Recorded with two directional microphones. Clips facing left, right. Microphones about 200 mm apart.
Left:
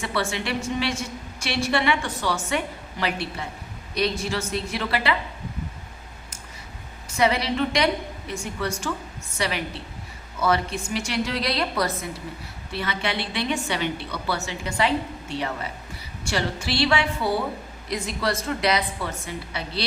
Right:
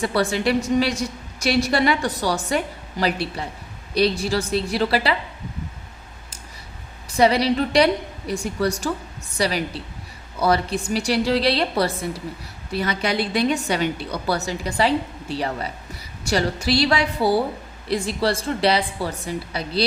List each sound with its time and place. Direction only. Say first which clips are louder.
0.0 s a woman's voice: right 6 dB; 35° right (ahead or behind)
7.1 s a woman's voice: right 5 dB; 35° right (ahead or behind)